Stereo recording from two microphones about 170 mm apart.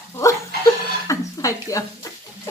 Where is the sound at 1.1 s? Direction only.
20° left (ahead or behind).